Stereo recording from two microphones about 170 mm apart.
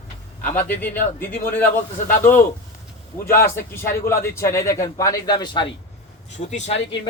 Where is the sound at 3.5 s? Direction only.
15° left (ahead or behind).